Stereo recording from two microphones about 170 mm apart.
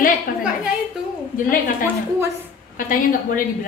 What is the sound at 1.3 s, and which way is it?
A woman's voice, 50° left (ahead or behind).